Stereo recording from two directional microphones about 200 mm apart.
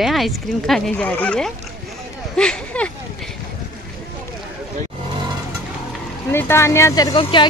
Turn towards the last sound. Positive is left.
turn(degrees=25)  # may be behind; listen again after turning